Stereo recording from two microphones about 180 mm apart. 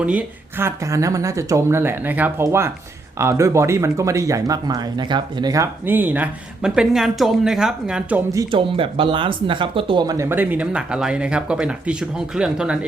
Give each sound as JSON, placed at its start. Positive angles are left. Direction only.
{"t": 0.0, "sound": "speech", "side_deg": -10}
{"t": 8.3, "sound": "speech", "side_deg": -25}